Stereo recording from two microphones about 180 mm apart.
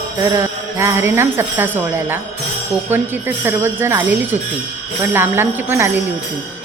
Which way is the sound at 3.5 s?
15° right (ahead or behind).